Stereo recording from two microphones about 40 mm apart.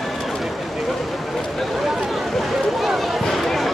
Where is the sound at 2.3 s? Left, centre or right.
Centre.